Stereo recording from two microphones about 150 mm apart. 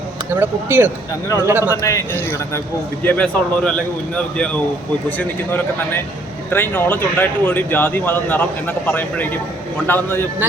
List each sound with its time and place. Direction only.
0.3 s speech: 15° right (ahead or behind)
1.7 s speech: 20° left (ahead or behind)
3.0 s speech: 10° left (ahead or behind)